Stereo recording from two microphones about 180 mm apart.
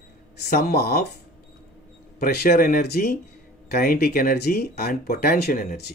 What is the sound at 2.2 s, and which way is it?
Speech, 60° left (ahead or behind).